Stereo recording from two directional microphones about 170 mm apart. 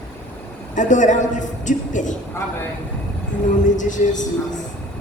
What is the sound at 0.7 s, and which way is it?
A woman's voice, 45° left (ahead or behind).